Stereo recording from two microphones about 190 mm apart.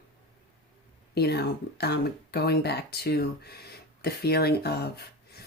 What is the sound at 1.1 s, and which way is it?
Speech, 60° left (ahead or behind).